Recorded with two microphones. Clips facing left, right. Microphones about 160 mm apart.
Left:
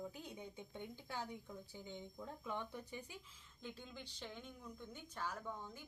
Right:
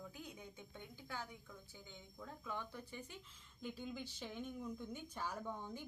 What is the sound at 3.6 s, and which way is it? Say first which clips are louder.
A woman's voice: right 5 dB; 5° right (ahead or behind).